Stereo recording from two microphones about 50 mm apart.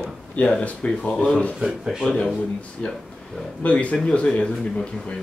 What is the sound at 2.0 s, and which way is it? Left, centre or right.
Speech, centre.